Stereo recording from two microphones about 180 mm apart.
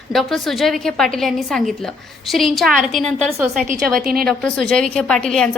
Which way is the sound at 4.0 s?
55° right (ahead or behind).